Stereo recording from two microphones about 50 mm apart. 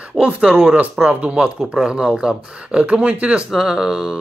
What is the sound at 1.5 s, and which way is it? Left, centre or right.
Speech, centre.